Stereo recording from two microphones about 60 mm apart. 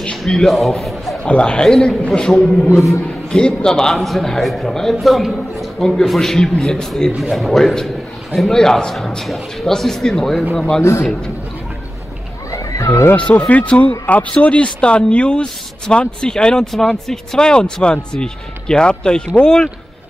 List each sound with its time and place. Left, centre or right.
0.0 s a man's voice: centre
1.2 s speech: centre
2.7 s a man's voice: centre
3.3 s a man's voice: centre
10.8 s a man's voice: left
12.4 s a sound: left
13.5 s speech: left